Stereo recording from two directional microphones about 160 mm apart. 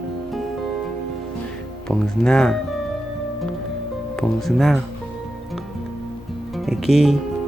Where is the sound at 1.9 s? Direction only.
5° left (ahead or behind).